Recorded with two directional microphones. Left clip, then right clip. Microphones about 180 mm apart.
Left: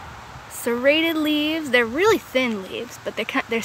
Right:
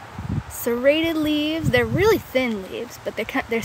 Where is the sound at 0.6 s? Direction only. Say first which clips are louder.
Even; 5° right (ahead or behind).